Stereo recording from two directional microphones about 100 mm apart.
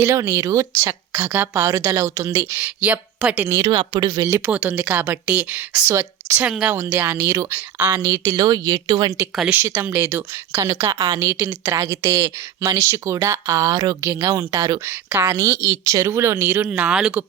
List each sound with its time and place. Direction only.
0.0 s speech: 30° right (ahead or behind)
2.6 s speech: 15° right (ahead or behind)
3.7 s speech: 55° right (ahead or behind)
4.3 s speech: 25° right (ahead or behind)
4.7 s speech: 15° right (ahead or behind)
5.9 s speech: 30° right (ahead or behind)
6.5 s speech: 10° right (ahead or behind)
6.9 s speech: 20° right (ahead or behind)
8.3 s speech: 45° right (ahead or behind)
9.5 s speech: 20° right (ahead or behind)
10.9 s a woman's voice: 60° right (ahead or behind)
11.2 s speech: 25° right (ahead or behind)
14.8 s speech: 20° right (ahead or behind)
16.6 s speech: 15° right (ahead or behind)